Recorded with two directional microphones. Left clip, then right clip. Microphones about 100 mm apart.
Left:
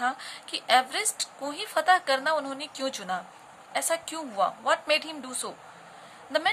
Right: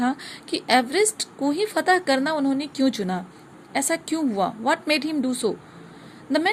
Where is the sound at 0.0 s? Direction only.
40° right (ahead or behind).